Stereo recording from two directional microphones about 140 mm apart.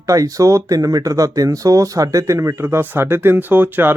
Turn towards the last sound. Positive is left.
turn(degrees=-15)  # may be behind; listen again after turning